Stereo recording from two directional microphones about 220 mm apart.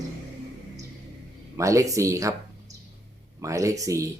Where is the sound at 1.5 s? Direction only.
15° right (ahead or behind).